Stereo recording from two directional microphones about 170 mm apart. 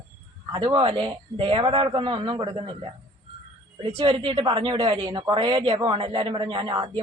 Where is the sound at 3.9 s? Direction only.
30° right (ahead or behind).